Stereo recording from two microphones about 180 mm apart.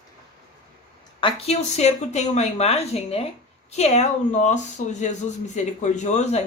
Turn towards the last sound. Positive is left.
turn(degrees=40)  # may be behind; listen again after turning